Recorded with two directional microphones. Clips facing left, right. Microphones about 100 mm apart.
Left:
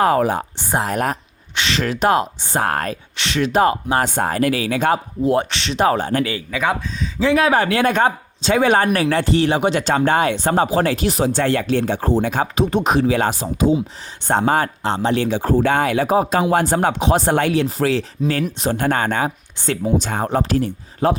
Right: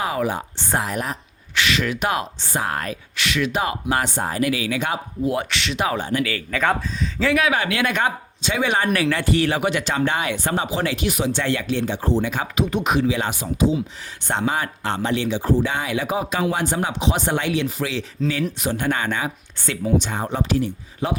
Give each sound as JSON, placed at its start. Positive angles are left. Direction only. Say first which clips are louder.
{"t": 0.0, "sound": "speech", "louder": "left 7 dB", "side_deg": 45}
{"t": 0.5, "sound": "speech", "louder": "left 2 dB", "side_deg": 15}
{"t": 0.8, "sound": "speech", "louder": "left 6 dB", "side_deg": 45}
{"t": 1.5, "sound": "speech", "louder": "left 1 dB", "side_deg": 30}
{"t": 2.6, "sound": "speech", "louder": "left 5 dB", "side_deg": 45}
{"t": 3.2, "sound": "speech", "louder": "left 6 dB", "side_deg": 30}
{"t": 3.9, "sound": "speech", "louder": "left 4 dB", "side_deg": 45}
{"t": 6.5, "sound": "speech", "louder": "even", "side_deg": 5}
{"t": 7.2, "sound": "speech", "louder": "left 4 dB", "side_deg": 25}
{"t": 7.4, "sound": "speech", "louder": "left 5 dB", "side_deg": 35}
{"t": 13.7, "sound": "speech", "louder": "left 3 dB", "side_deg": 35}
{"t": 14.8, "sound": "speech", "louder": "left 2 dB", "side_deg": 25}
{"t": 15.1, "sound": "speech", "louder": "left 1 dB", "side_deg": 45}
{"t": 16.5, "sound": "speech", "louder": "left 6 dB", "side_deg": 50}